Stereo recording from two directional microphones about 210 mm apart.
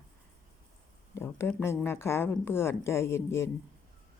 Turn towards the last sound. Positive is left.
turn(degrees=10)  # may be behind; listen again after turning